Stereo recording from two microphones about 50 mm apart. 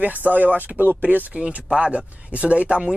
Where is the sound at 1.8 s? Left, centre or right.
Right.